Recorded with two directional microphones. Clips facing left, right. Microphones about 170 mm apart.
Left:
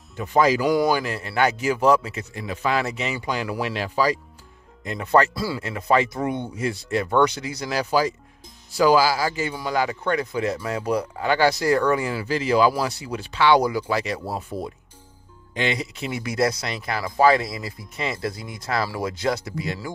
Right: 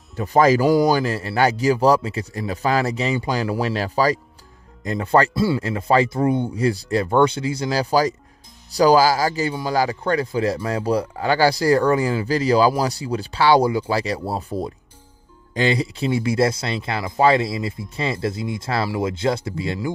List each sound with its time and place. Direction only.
0.1 s speech: 35° right (ahead or behind)
0.7 s speech: 30° right (ahead or behind)
4.8 s speech: 30° right (ahead or behind)